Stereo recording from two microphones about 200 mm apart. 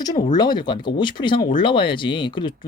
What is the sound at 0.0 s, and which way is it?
Speech, 20° left (ahead or behind).